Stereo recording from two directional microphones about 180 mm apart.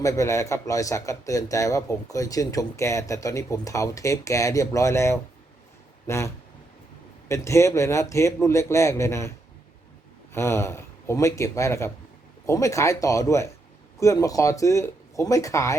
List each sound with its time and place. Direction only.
0.0 s a man's voice: 15° left (ahead or behind)
10.3 s a man's voice: 15° left (ahead or behind)